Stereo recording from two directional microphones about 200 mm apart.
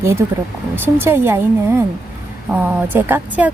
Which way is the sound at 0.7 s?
10° right (ahead or behind).